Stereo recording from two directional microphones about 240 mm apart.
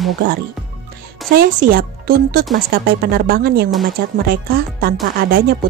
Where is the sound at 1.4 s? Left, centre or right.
Right.